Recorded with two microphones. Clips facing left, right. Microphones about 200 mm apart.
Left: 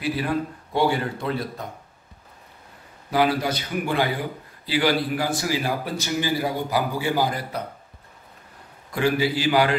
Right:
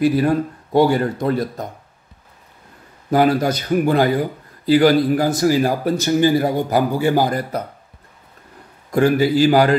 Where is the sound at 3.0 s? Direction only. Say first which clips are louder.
Right 6 dB; 45° right (ahead or behind).